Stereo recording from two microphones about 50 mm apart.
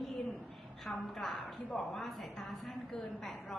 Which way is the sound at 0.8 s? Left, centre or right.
Centre.